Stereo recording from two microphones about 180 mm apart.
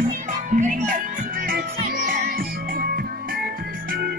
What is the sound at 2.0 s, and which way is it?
Music, 50° right (ahead or behind).